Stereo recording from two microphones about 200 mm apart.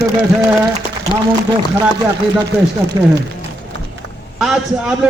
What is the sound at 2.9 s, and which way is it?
Speech, 20° right (ahead or behind).